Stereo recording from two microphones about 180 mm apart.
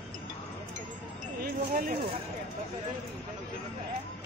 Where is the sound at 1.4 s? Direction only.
55° right (ahead or behind).